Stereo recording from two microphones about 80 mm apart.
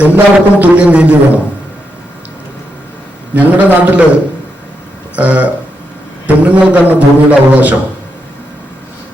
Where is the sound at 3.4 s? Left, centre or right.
Right.